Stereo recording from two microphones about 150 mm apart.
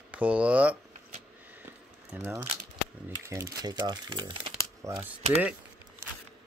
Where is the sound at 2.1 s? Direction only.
15° right (ahead or behind).